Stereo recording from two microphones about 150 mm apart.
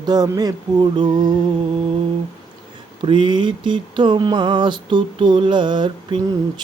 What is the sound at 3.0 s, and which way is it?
Mantra, 30° right (ahead or behind).